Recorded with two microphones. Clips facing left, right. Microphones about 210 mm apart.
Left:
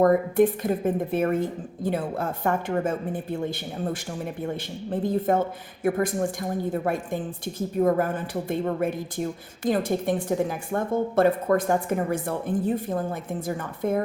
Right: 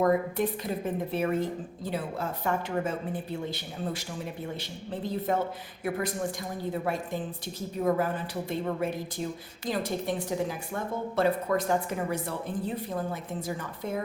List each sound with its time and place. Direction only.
0.0 s a woman's voice: 50° left (ahead or behind)